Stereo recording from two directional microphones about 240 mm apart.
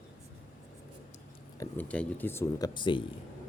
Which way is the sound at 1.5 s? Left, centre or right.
Centre.